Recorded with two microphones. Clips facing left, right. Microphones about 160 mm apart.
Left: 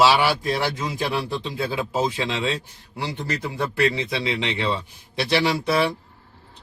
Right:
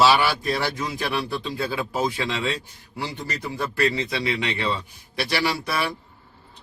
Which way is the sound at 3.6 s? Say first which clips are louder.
Left 1 dB; 20° left (ahead or behind).